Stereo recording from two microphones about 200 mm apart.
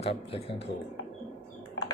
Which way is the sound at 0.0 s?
30° left (ahead or behind).